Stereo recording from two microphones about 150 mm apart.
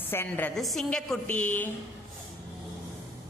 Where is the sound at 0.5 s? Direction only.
Centre (ahead or behind).